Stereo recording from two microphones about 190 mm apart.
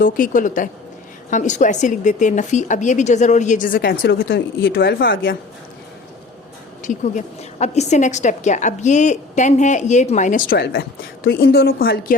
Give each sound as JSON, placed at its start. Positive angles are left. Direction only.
{"t": 0.0, "sound": "a woman's voice", "side_deg": 45}
{"t": 6.8, "sound": "a woman's voice", "side_deg": 40}